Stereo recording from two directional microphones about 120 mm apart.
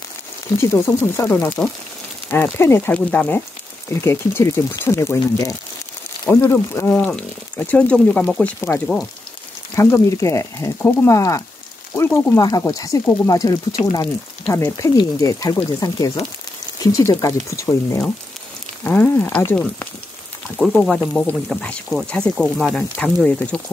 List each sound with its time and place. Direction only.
0.6 s speech: 20° left (ahead or behind)
8.5 s speech: 20° left (ahead or behind)
12.4 s speech: 30° left (ahead or behind); by 19.9 s 15° left (ahead or behind)
20.6 s speech: centre (ahead or behind)